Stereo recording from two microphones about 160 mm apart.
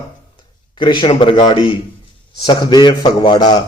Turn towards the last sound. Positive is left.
turn(degrees=25)  # may be behind; listen again after turning